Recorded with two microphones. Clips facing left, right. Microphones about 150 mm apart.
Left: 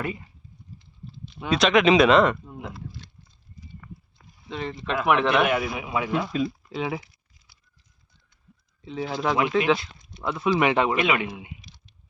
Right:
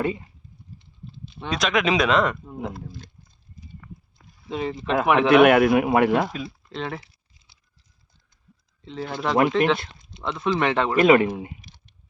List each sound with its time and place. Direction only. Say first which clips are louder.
1.4 s speech: left 4 dB; centre (ahead or behind)
2.7 s a sound: right 2 dB; 50° right (ahead or behind)
4.4 s speech: right 4 dB; 5° right (ahead or behind)
5.4 s speech: right 9 dB; 60° right (ahead or behind)
6.3 s speech: left 6 dB; centre (ahead or behind)
8.8 s speech: left 1 dB; 5° left (ahead or behind)
10.0 s a sound: even; 25° right (ahead or behind)
10.2 s speech: left 1 dB; 10° left (ahead or behind)
10.9 s speech: right 8 dB; 40° right (ahead or behind)